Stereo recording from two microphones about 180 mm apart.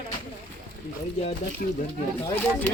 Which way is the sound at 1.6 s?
50° left (ahead or behind).